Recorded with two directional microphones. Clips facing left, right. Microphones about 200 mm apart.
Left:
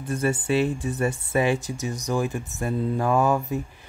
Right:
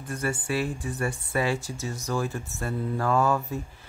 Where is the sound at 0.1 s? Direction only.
25° left (ahead or behind).